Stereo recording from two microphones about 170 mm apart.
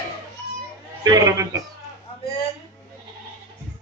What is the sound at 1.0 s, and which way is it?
Speech, 20° right (ahead or behind).